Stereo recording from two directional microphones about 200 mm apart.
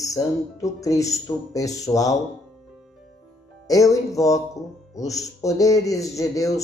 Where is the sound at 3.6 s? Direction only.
15° left (ahead or behind).